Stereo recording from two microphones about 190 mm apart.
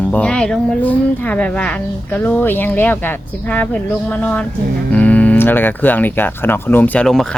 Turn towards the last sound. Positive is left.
turn(degrees=5)  # may be behind; listen again after turning